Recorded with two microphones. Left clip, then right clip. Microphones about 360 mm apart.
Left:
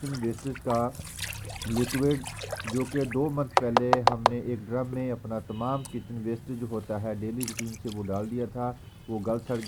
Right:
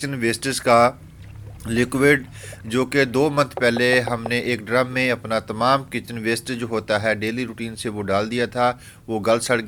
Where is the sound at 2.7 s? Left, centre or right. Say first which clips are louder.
Right 11 dB; right.